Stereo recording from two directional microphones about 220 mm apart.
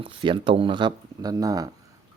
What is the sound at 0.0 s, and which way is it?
Speech, 20° right (ahead or behind).